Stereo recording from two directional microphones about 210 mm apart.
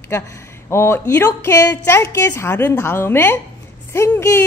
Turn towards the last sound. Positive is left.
turn(degrees=10)  # may be behind; listen again after turning